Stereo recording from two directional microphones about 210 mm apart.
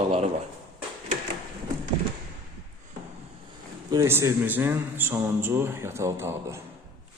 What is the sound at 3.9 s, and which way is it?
Speech, 15° right (ahead or behind).